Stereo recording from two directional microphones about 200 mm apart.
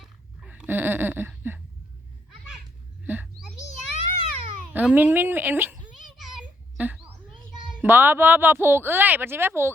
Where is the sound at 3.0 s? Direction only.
10° right (ahead or behind).